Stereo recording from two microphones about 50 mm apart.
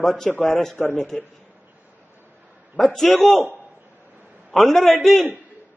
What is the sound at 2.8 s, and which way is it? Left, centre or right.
Speech, centre.